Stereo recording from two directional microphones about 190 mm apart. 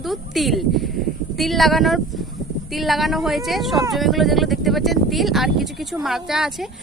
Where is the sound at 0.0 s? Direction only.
Centre (ahead or behind).